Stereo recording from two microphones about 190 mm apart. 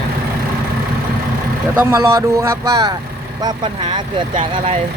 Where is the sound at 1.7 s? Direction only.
15° right (ahead or behind).